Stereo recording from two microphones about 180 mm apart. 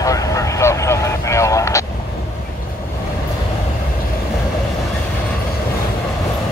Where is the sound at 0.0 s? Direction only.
20° left (ahead or behind).